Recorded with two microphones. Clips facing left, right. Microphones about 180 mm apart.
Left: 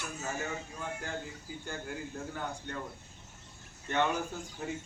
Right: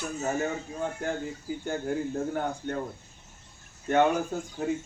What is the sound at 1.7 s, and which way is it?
A man's voice, 45° right (ahead or behind).